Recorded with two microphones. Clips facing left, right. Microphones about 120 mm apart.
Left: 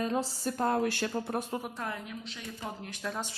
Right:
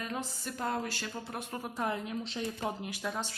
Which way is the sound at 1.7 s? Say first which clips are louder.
Right 4 dB; 20° right (ahead or behind).